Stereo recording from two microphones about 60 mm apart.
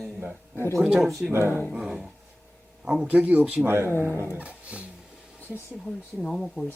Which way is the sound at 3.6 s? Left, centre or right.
Right.